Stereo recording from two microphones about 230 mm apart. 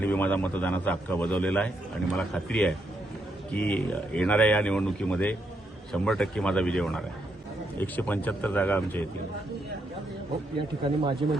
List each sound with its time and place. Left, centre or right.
0.0 s a man's voice: centre
10.8 s speech: right